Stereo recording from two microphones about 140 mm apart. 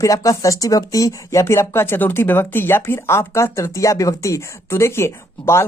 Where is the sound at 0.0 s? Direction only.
25° left (ahead or behind).